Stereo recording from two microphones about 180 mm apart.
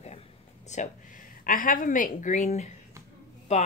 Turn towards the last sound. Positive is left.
turn(degrees=40)  # may be behind; listen again after turning